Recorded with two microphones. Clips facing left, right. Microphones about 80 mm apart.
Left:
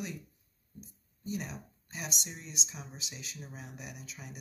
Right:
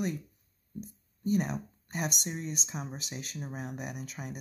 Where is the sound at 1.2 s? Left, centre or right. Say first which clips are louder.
Right 9 dB; right.